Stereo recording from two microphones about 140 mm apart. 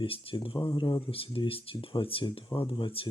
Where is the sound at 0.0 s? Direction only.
40° left (ahead or behind).